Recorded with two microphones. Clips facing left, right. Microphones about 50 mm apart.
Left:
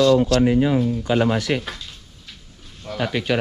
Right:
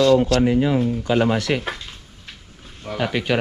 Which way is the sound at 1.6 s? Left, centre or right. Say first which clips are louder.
Right 4 dB; right.